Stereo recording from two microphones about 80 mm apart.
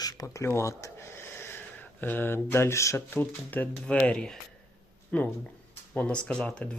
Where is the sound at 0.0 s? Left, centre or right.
Left.